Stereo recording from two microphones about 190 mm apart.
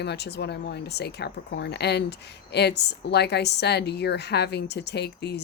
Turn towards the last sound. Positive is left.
turn(degrees=60)  # may be behind; listen again after turning